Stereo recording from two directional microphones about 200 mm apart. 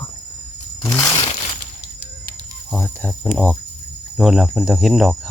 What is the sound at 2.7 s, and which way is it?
Speech, 5° left (ahead or behind).